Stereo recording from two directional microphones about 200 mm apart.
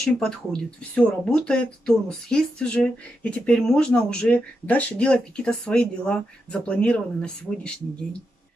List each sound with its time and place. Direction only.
0.0 s speech: 5° left (ahead or behind)